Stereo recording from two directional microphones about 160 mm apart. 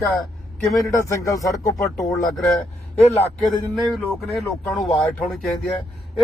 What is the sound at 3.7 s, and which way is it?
Speech, centre (ahead or behind).